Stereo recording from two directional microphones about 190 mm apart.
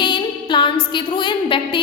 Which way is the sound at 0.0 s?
25° left (ahead or behind).